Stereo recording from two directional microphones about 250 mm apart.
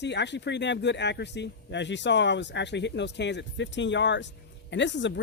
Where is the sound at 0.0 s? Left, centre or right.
Left.